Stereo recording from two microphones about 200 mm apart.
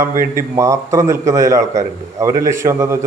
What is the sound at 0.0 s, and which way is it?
A man's voice, 15° right (ahead or behind).